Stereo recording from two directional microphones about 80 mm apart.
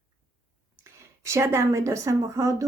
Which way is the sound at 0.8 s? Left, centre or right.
Right.